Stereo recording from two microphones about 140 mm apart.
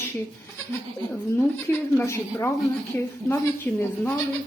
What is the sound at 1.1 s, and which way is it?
A woman's voice, 15° left (ahead or behind).